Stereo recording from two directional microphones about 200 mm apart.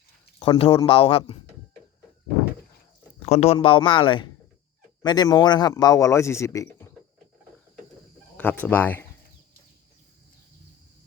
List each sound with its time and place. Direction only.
0.3 s a man's voice: 25° left (ahead or behind)
3.2 s a man's voice: 30° left (ahead or behind); by 6.8 s 15° left (ahead or behind)
8.6 s speech: 10° left (ahead or behind)